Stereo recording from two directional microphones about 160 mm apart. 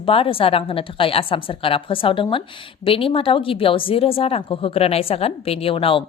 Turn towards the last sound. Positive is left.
turn(degrees=35)  # may be behind; listen again after turning